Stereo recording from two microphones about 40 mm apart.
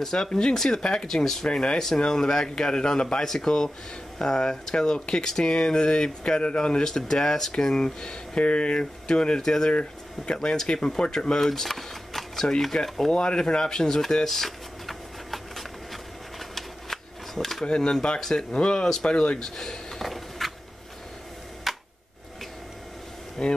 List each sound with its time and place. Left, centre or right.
0.0 s speech: centre
9.4 s speech: centre
9.7 s speech: left
13.1 s a sound: left; by 17.6 s centre
17.6 s speech: left
19.4 s a sound: centre
21.7 s tick: centre
23.4 s speech: centre